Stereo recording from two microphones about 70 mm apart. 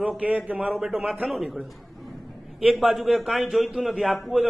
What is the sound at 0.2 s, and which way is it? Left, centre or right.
Speech, right.